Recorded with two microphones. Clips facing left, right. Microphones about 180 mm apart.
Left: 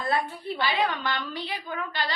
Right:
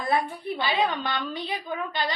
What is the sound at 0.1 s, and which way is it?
A woman's voice, 20° right (ahead or behind).